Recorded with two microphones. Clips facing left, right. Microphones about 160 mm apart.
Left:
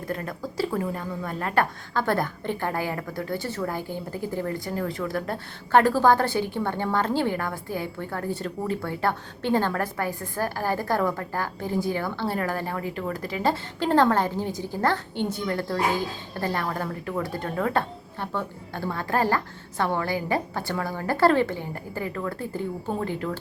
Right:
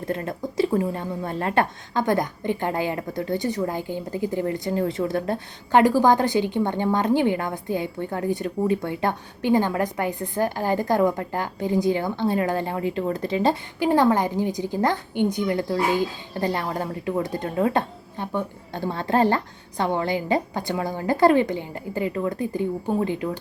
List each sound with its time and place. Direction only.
0.1 s speech: 25° right (ahead or behind)